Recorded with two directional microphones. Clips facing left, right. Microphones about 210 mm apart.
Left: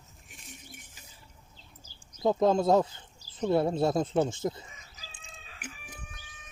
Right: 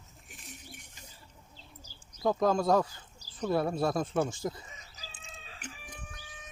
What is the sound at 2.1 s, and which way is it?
Speech, 25° left (ahead or behind).